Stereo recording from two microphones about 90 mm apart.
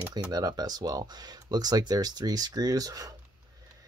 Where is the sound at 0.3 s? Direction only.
45° right (ahead or behind).